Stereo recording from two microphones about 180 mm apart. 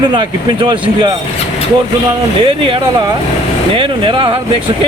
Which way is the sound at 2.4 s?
30° right (ahead or behind).